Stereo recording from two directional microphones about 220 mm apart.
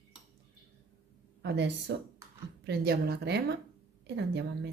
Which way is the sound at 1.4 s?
50° right (ahead or behind).